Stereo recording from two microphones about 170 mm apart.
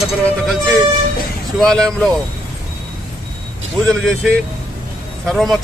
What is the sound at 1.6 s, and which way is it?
Speech, 5° left (ahead or behind).